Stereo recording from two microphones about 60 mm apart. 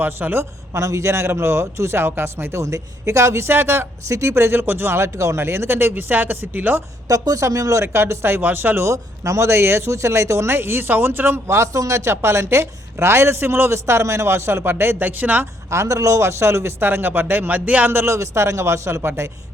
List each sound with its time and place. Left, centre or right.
0.0 s speech: right
0.8 s a man's voice: right
7.1 s speech: right
8.9 s speech: right
11.4 s speech: right
15.7 s speech: right
17.9 s speech: right